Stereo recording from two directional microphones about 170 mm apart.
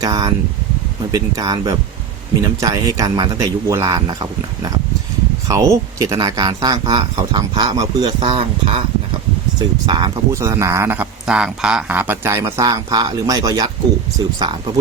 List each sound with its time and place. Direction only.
0.0 s speech: 20° right (ahead or behind)